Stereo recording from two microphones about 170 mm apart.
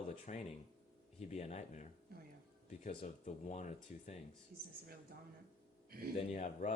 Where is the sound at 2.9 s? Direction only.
40° left (ahead or behind).